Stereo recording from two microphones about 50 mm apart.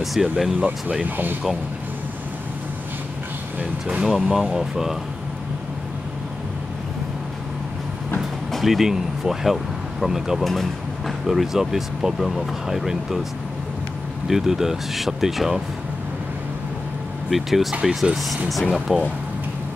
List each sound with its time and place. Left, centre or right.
0.0 s speech: centre
0.6 s speech: right
4.0 s speech: centre
8.5 s speech: centre
10.4 s speech: centre
14.2 s speech: centre
17.3 s speech: centre